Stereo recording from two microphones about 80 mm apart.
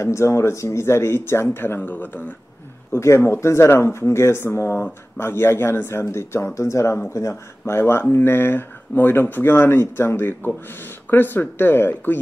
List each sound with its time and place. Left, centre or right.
0.0 s speech: left
2.9 s speech: left